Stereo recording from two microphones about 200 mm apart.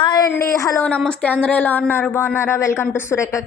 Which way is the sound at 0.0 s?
20° left (ahead or behind).